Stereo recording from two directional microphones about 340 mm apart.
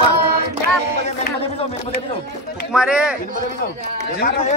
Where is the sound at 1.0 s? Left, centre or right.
Centre.